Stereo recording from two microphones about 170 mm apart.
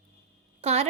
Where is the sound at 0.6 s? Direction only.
35° right (ahead or behind).